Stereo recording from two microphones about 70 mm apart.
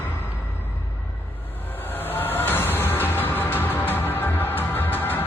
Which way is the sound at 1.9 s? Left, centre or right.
Left.